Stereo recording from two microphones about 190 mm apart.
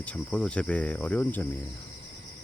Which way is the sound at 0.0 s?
5° left (ahead or behind).